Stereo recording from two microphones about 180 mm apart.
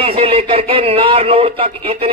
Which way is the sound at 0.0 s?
30° right (ahead or behind).